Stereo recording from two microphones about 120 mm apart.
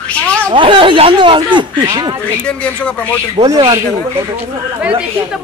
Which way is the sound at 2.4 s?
10° left (ahead or behind).